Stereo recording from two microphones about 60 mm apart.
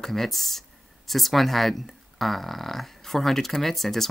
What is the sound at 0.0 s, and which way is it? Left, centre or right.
Speech, centre.